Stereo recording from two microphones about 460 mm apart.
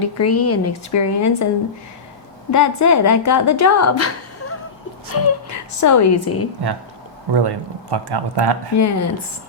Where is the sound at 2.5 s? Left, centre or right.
Left.